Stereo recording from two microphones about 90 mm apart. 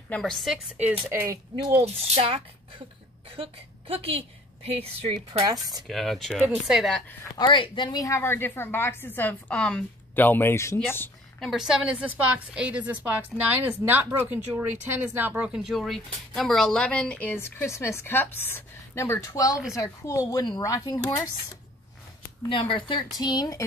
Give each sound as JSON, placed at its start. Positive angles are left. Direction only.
{"t": 0.2, "sound": "speech", "side_deg": 0}
{"t": 0.7, "sound": "a woman's voice", "side_deg": -15}
{"t": 1.7, "sound": "a woman's voice", "side_deg": -90}
{"t": 5.5, "sound": "speech", "side_deg": -45}
{"t": 5.9, "sound": "speech", "side_deg": 0}
{"t": 7.3, "sound": "speech", "side_deg": 60}
{"t": 7.9, "sound": "speech", "side_deg": 40}
{"t": 8.2, "sound": "speech", "side_deg": 25}
{"t": 11.3, "sound": "a woman's voice", "side_deg": -5}
{"t": 15.5, "sound": "speech", "side_deg": -5}
{"t": 22.5, "sound": "speech", "side_deg": 70}
{"t": 23.1, "sound": "speech", "side_deg": 50}